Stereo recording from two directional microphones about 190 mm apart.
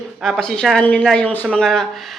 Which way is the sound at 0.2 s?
Centre (ahead or behind).